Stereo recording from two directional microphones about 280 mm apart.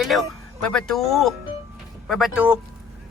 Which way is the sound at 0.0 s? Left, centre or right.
Centre.